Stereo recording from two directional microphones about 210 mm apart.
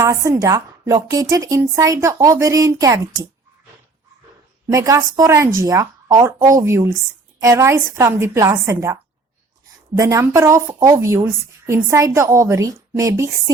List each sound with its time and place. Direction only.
0.0 s a woman's voice: 15° right (ahead or behind)
4.7 s a woman's voice: 15° right (ahead or behind)